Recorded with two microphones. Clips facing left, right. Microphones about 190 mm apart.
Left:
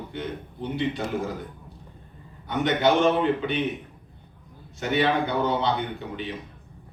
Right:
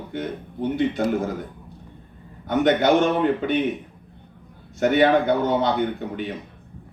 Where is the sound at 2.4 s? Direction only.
45° right (ahead or behind).